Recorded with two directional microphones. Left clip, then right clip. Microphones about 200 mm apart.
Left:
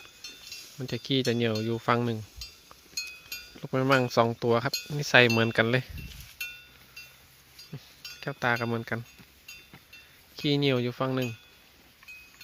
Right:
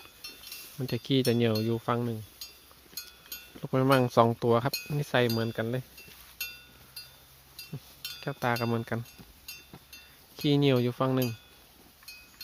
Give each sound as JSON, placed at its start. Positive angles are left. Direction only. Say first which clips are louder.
{"t": 0.8, "sound": "speech", "louder": "even", "side_deg": 0}
{"t": 1.8, "sound": "speech", "louder": "left 4 dB", "side_deg": 10}
{"t": 3.6, "sound": "speech", "louder": "even", "side_deg": 0}
{"t": 5.1, "sound": "speech", "louder": "left 7 dB", "side_deg": 10}
{"t": 8.2, "sound": "speech", "louder": "left 2 dB", "side_deg": 0}
{"t": 10.3, "sound": "speech", "louder": "right 1 dB", "side_deg": -5}